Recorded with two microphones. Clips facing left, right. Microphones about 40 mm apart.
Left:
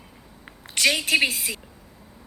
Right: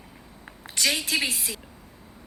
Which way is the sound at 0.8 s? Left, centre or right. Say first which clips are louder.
Left 5 dB; left.